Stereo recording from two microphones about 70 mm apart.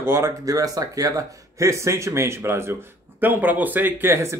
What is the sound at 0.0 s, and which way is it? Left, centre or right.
Speech, right.